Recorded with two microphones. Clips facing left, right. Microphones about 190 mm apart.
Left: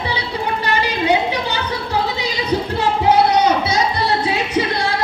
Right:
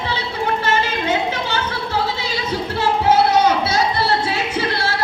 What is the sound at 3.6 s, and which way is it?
Music, 15° left (ahead or behind).